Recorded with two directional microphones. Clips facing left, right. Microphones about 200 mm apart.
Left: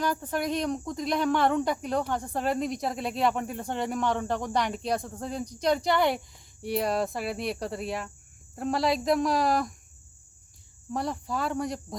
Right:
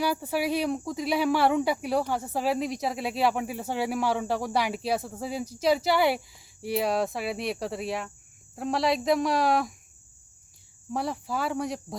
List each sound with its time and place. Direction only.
0.0 s speech: 10° right (ahead or behind)
10.9 s speech: centre (ahead or behind)